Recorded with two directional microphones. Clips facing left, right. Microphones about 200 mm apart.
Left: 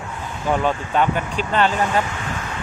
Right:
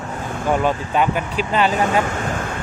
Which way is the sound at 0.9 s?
10° right (ahead or behind).